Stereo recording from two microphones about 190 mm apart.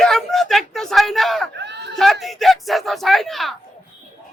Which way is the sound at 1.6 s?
65° right (ahead or behind).